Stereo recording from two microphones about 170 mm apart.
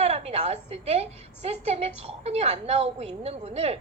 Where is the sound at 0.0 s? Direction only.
40° right (ahead or behind).